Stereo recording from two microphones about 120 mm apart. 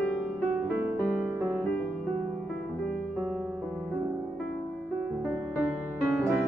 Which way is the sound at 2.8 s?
10° left (ahead or behind).